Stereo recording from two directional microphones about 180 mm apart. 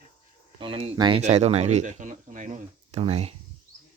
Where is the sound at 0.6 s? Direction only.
30° right (ahead or behind).